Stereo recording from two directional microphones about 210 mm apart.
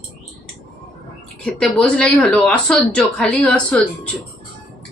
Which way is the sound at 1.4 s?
Centre (ahead or behind).